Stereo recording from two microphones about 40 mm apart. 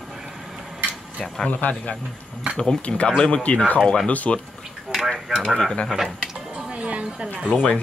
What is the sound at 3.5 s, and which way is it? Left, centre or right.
Speech, left.